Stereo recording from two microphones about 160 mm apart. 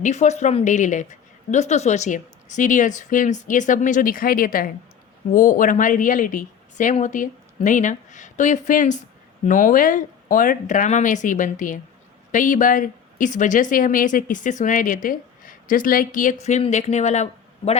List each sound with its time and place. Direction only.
0.0 s a woman's voice: 45° left (ahead or behind)